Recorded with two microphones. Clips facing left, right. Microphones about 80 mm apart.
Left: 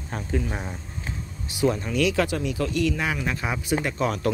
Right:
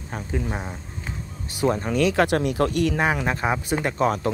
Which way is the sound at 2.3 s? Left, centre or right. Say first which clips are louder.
Right 5 dB; right.